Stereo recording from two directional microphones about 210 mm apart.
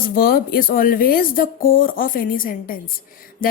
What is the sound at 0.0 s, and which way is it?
A woman's voice, 45° left (ahead or behind).